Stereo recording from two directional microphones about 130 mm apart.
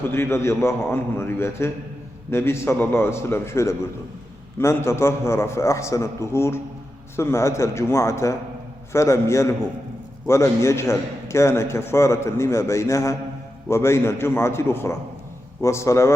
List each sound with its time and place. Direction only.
0.1 s a man's voice: 20° left (ahead or behind)